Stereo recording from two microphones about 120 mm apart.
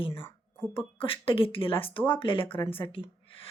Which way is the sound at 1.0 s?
50° left (ahead or behind).